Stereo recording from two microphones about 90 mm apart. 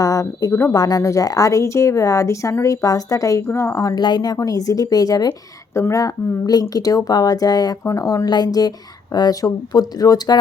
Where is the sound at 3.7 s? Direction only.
45° left (ahead or behind).